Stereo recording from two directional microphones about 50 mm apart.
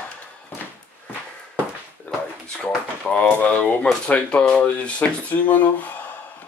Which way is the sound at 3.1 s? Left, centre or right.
Left.